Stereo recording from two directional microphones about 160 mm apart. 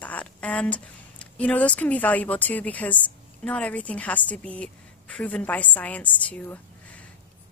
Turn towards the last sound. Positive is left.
turn(degrees=10)  # may be behind; listen again after turning